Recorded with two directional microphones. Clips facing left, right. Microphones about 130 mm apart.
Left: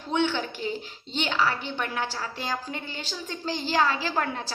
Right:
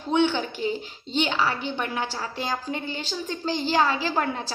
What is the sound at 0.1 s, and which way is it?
A woman's voice, 20° right (ahead or behind).